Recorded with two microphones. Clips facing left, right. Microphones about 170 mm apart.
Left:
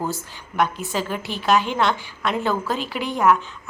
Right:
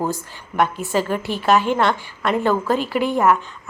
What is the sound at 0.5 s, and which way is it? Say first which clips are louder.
A woman's voice: right 3 dB; centre (ahead or behind).